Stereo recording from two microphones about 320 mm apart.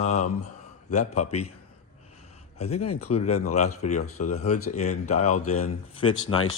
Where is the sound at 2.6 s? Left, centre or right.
Centre.